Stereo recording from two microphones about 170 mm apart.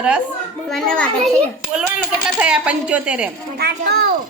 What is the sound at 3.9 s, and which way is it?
Speech, 65° right (ahead or behind).